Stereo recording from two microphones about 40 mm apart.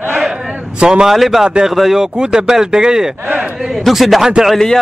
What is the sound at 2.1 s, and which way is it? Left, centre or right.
Speech, centre.